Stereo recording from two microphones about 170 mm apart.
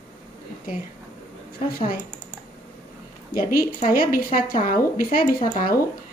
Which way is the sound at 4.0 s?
55° left (ahead or behind).